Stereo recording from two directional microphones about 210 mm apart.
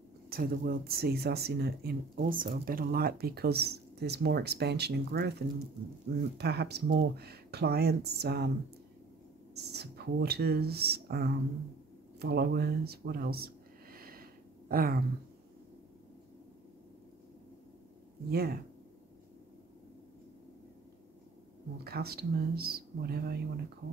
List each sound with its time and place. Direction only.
0.3 s speech: 45° right (ahead or behind)
6.3 s speech: 50° right (ahead or behind)
9.5 s speech: 50° right (ahead or behind)
18.3 s speech: 45° right (ahead or behind)
21.8 s speech: 50° right (ahead or behind)